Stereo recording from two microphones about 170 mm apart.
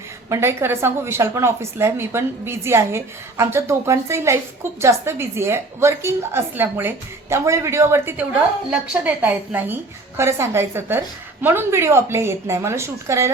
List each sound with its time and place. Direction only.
0.3 s a woman's voice: 15° right (ahead or behind)